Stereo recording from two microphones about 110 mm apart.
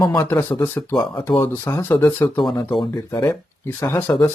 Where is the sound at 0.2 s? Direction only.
25° left (ahead or behind).